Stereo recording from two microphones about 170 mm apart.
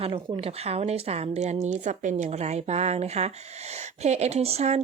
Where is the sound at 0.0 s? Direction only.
35° right (ahead or behind).